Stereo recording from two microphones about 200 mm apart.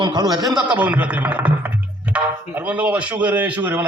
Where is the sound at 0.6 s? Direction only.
5° right (ahead or behind).